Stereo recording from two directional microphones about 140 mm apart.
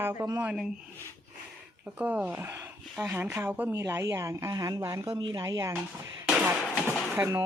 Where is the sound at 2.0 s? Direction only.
10° right (ahead or behind).